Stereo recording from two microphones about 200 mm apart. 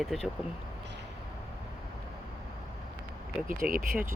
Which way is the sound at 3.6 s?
45° right (ahead or behind).